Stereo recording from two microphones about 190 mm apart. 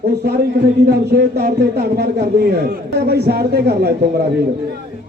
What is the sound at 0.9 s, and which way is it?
A man's voice, 55° right (ahead or behind).